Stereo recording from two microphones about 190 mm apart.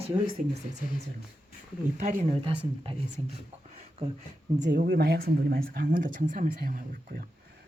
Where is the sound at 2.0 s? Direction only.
40° right (ahead or behind).